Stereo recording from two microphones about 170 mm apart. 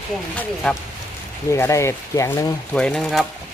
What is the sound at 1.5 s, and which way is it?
Speech, 15° left (ahead or behind).